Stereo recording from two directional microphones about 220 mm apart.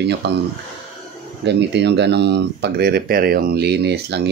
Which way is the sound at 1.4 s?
50° right (ahead or behind).